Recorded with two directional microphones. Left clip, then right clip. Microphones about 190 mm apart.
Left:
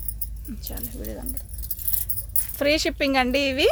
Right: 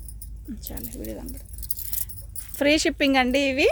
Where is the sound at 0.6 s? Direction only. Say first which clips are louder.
Even; 30° right (ahead or behind).